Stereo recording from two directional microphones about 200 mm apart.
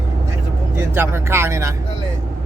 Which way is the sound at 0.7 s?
10° right (ahead or behind).